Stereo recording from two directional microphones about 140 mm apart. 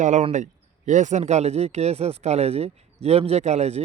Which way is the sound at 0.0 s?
55° right (ahead or behind).